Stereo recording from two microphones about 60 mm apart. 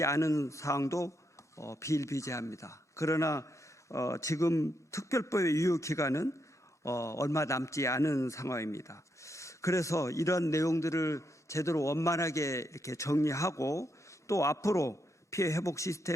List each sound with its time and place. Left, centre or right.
0.0 s a man's voice: left